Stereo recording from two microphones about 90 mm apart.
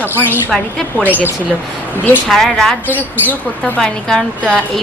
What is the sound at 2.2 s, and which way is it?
A woman's voice, 5° left (ahead or behind).